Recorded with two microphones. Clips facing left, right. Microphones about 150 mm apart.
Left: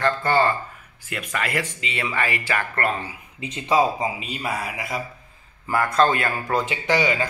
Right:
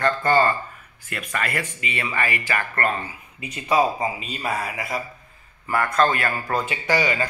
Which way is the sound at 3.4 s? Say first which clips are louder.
Even; 25° left (ahead or behind).